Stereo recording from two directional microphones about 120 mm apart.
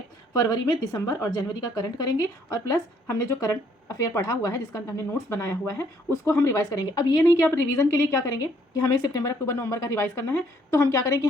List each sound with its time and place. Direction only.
0.3 s a woman's voice: 30° left (ahead or behind)